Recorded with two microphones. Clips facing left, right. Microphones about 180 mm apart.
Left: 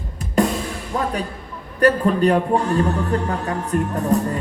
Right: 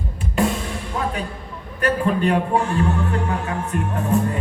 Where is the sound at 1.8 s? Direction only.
40° left (ahead or behind).